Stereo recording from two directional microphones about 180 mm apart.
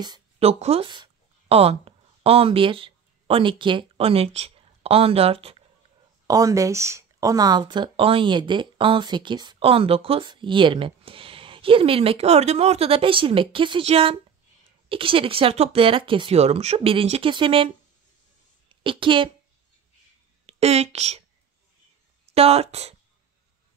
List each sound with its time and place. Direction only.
0.4 s speech: 35° right (ahead or behind)
6.2 s speech: 20° right (ahead or behind)
18.7 s a woman's voice: 30° right (ahead or behind)
20.4 s speech: 35° right (ahead or behind)
22.3 s speech: 35° right (ahead or behind)